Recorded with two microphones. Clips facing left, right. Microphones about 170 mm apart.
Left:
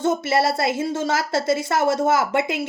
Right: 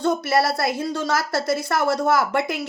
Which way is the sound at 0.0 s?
20° left (ahead or behind).